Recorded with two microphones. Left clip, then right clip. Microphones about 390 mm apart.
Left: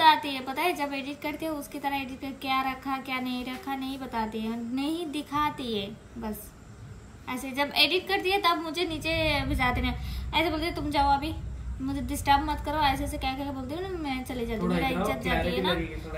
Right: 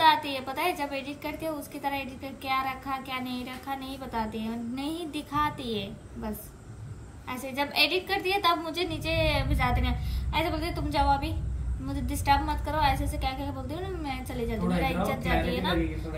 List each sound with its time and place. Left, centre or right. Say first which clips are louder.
0.0 s a woman's voice: left 1 dB; centre